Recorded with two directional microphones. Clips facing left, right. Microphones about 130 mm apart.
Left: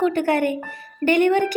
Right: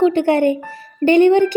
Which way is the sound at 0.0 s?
25° right (ahead or behind).